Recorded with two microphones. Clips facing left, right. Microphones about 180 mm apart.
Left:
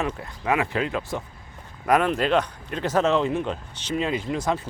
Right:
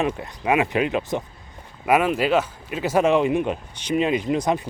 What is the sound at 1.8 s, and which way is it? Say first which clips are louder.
Speech: right 2 dB; 5° right (ahead or behind).